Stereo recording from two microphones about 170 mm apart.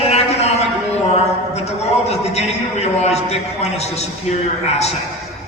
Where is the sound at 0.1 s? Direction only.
40° left (ahead or behind).